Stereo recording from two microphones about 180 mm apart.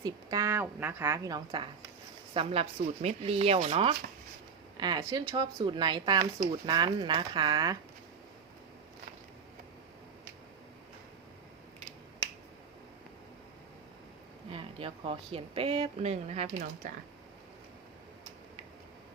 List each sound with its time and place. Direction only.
0.0 s a woman's voice: 20° right (ahead or behind)
2.3 s speech: 30° right (ahead or behind)
14.5 s speech: 30° right (ahead or behind)